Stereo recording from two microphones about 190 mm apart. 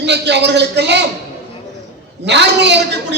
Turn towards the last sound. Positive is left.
turn(degrees=-65)  # may be behind; listen again after turning